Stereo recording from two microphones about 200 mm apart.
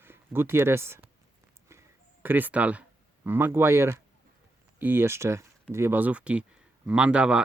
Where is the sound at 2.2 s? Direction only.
10° right (ahead or behind).